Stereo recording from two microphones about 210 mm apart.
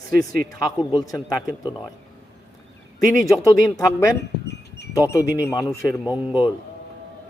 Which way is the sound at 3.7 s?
15° left (ahead or behind).